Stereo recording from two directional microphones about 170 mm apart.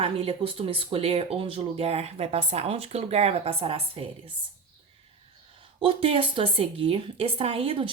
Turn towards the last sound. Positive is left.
turn(degrees=-30)  # may be behind; listen again after turning